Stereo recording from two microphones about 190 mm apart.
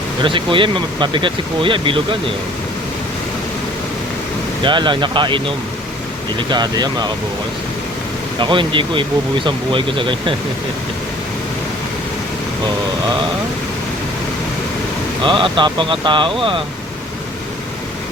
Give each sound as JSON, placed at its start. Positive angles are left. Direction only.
{"t": 0.2, "sound": "speech", "side_deg": -25}
{"t": 4.6, "sound": "speech", "side_deg": -25}
{"t": 6.5, "sound": "speech", "side_deg": -20}
{"t": 8.4, "sound": "speech", "side_deg": -25}
{"t": 15.2, "sound": "speech", "side_deg": -25}